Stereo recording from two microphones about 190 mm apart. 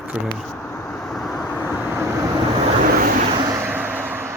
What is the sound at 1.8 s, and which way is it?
Vehicle, 10° right (ahead or behind).